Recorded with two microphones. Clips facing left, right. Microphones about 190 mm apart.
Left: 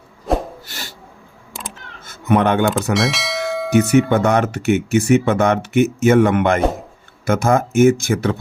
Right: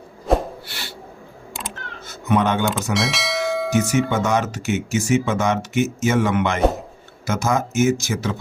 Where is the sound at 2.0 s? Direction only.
55° left (ahead or behind).